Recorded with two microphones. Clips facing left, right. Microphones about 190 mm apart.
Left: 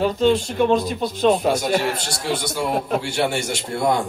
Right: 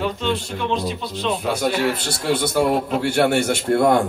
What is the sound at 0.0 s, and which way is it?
Speech, 40° left (ahead or behind).